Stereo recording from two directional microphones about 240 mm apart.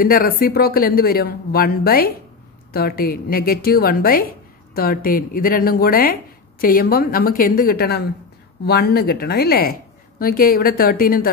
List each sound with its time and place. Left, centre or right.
0.0 s a woman's voice: left